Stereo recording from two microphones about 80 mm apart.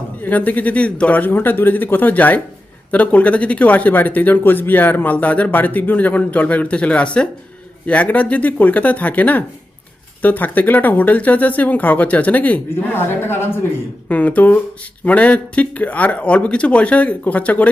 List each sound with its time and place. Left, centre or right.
0.2 s speech: left